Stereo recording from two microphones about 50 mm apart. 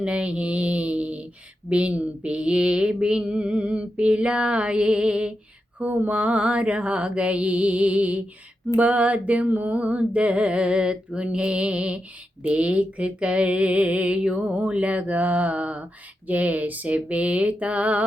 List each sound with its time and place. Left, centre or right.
0.0 s mantra: right
5.8 s mantra: right; by 14.5 s centre
14.5 s mantra: right